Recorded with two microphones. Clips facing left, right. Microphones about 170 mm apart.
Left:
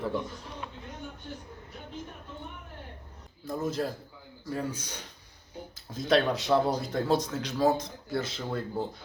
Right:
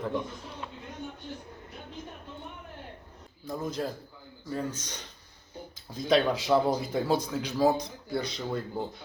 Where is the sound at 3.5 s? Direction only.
5° left (ahead or behind).